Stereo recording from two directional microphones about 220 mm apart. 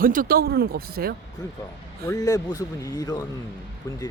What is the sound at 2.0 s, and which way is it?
A man's voice, 15° left (ahead or behind).